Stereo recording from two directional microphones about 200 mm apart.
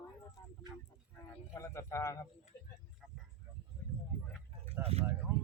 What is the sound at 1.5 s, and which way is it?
Speech, 15° left (ahead or behind).